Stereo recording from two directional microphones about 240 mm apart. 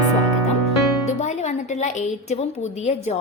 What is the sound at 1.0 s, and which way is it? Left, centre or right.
Speech, left.